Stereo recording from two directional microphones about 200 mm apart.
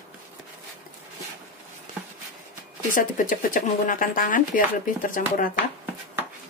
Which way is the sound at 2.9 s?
40° left (ahead or behind).